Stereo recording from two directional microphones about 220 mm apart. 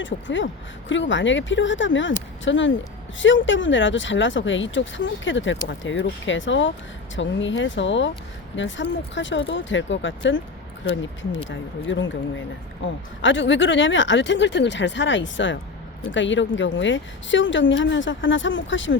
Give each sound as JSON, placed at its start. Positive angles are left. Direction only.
{"t": 0.0, "sound": "a woman's voice", "side_deg": 55}
{"t": 11.4, "sound": "a woman's voice", "side_deg": 60}